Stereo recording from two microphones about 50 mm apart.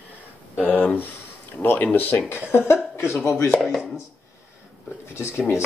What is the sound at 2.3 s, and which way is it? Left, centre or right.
Speech, left.